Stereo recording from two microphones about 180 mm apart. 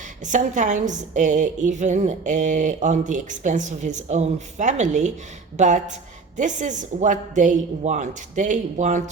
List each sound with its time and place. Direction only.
0.3 s a woman's voice: 45° right (ahead or behind)